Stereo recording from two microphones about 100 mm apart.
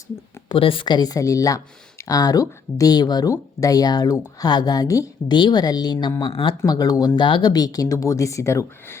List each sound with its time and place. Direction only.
0.4 s speech: 60° left (ahead or behind); by 5.0 s 35° left (ahead or behind)
5.3 s speech: 45° left (ahead or behind)
6.7 s speech: 40° left (ahead or behind)
7.2 s speech: 50° left (ahead or behind); by 9.0 s 30° left (ahead or behind)